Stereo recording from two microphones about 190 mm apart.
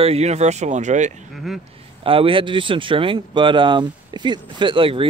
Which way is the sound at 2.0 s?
30° right (ahead or behind).